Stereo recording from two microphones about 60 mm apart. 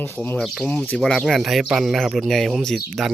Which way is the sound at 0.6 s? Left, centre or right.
Left.